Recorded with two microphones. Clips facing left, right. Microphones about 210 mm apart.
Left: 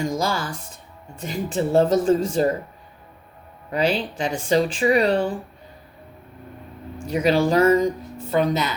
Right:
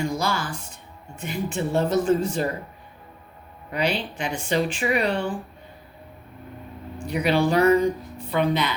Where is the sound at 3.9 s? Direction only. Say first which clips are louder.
Left 3 dB; 35° left (ahead or behind).